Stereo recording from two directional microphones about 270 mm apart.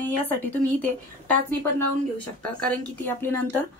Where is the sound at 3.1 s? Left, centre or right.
Centre.